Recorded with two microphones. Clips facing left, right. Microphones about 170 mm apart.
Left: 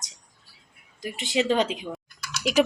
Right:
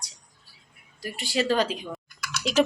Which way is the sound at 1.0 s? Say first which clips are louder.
Left 2 dB; 20° left (ahead or behind).